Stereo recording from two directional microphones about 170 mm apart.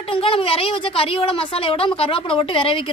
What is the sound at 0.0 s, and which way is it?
A woman's voice, 35° left (ahead or behind).